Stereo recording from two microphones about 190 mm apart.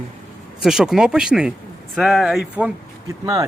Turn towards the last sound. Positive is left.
turn(degrees=-5)  # may be behind; listen again after turning